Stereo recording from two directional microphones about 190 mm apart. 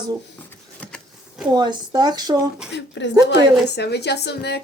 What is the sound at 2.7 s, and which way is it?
Speech, 70° left (ahead or behind).